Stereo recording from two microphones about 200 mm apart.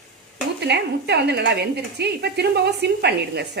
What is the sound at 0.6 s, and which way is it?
A woman's voice, 55° right (ahead or behind).